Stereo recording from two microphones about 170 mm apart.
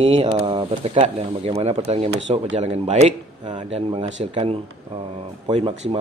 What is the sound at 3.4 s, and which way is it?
A man's voice, 30° right (ahead or behind).